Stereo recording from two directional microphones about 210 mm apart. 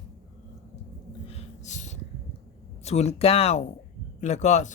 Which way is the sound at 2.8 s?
30° left (ahead or behind).